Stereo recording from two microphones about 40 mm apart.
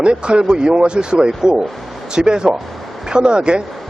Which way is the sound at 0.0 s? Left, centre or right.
Right.